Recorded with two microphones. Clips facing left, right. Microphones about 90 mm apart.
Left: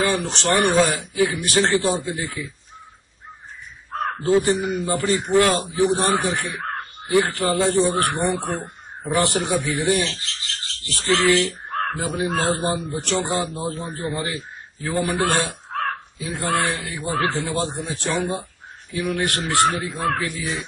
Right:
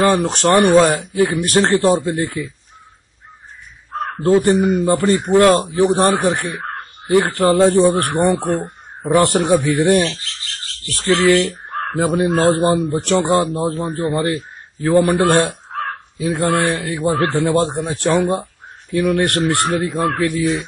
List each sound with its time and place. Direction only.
0.0 s a man's voice: 50° right (ahead or behind)
4.2 s a man's voice: 50° right (ahead or behind)
8.6 s a man's voice: 50° right (ahead or behind)
11.9 s a man's voice: 50° right (ahead or behind)